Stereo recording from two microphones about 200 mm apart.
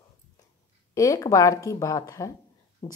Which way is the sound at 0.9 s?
15° left (ahead or behind).